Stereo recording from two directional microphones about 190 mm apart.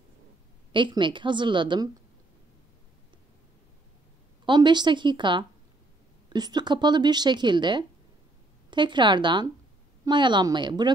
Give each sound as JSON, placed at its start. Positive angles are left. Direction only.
{"t": 0.7, "sound": "speech", "side_deg": -25}
{"t": 4.5, "sound": "speech", "side_deg": -25}